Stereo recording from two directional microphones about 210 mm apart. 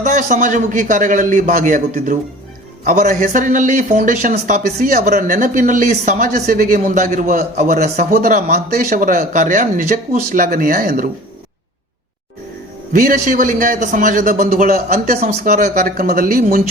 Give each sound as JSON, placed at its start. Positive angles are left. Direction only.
{"t": 0.0, "sound": "a man's voice", "side_deg": -35}
{"t": 12.9, "sound": "a man's voice", "side_deg": -40}